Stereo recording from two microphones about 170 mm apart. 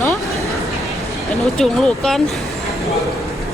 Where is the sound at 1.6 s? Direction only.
5° left (ahead or behind).